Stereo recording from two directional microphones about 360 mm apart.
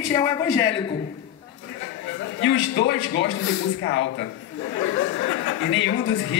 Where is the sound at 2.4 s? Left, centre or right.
Left.